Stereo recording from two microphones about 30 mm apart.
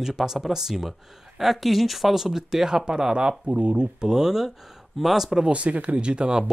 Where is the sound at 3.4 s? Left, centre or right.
Right.